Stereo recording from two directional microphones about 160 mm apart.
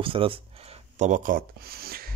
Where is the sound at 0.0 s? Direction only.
35° right (ahead or behind).